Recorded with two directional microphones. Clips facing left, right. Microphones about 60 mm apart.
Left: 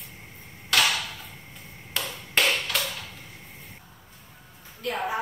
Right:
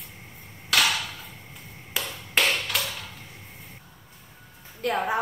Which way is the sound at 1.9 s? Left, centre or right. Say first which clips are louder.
Even; centre.